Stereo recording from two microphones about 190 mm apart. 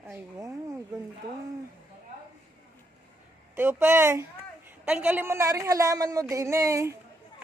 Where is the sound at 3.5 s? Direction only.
10° right (ahead or behind).